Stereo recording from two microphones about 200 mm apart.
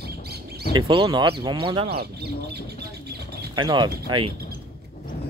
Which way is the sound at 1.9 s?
55° right (ahead or behind).